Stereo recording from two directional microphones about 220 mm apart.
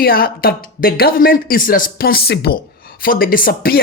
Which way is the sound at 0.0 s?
40° left (ahead or behind).